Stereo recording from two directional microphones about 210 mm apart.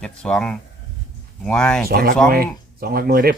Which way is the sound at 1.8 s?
45° right (ahead or behind).